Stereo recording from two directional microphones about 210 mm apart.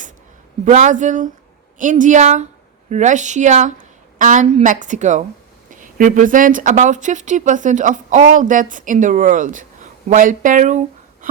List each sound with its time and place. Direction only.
0.6 s speech: 35° right (ahead or behind)